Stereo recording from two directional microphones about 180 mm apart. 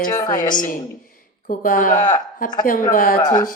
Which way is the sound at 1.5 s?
50° left (ahead or behind).